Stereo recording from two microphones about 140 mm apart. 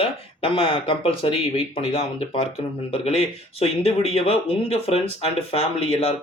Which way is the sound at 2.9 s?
45° left (ahead or behind).